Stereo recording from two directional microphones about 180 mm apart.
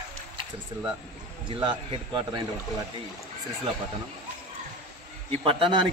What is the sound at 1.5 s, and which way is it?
Speech, 30° right (ahead or behind).